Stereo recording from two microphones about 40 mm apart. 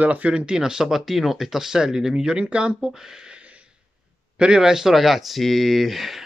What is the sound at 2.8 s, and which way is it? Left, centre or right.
Speech, centre.